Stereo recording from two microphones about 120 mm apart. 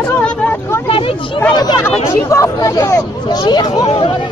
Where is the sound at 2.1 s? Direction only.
25° left (ahead or behind).